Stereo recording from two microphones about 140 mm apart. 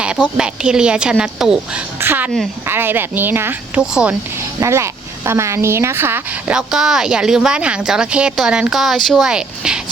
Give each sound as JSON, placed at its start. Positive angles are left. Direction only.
{"t": 0.0, "sound": "speech", "side_deg": -5}
{"t": 2.0, "sound": "a sound", "side_deg": -15}
{"t": 2.6, "sound": "speech", "side_deg": -15}
{"t": 6.5, "sound": "speech", "side_deg": -5}